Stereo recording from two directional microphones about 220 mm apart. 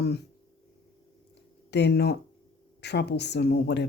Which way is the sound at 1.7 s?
50° left (ahead or behind).